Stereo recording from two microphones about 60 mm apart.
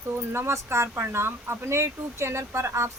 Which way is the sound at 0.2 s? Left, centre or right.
Right.